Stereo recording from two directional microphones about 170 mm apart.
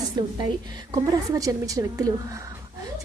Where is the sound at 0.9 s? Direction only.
20° right (ahead or behind).